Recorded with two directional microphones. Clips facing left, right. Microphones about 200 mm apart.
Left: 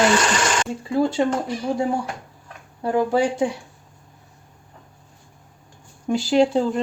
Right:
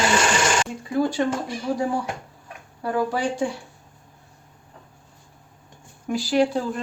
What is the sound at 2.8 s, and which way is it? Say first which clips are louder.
Speech: left 4 dB; 25° left (ahead or behind).